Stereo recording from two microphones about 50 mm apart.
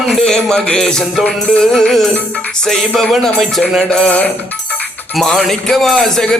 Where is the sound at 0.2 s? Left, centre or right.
Centre.